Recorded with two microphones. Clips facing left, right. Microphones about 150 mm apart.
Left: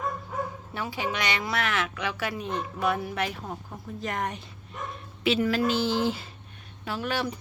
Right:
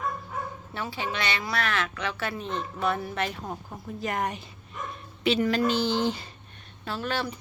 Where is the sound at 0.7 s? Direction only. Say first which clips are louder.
Right 1 dB; 15° left (ahead or behind).